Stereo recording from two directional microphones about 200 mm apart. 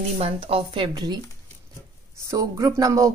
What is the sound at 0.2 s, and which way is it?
Speech, 30° right (ahead or behind).